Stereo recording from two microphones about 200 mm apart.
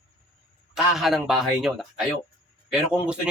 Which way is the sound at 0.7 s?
Centre (ahead or behind).